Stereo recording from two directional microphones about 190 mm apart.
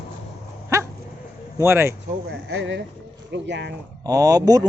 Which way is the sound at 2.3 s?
60° right (ahead or behind).